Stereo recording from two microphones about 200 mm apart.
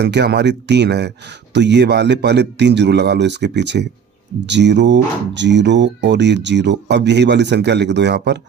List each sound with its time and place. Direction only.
0.0 s speech: 60° right (ahead or behind)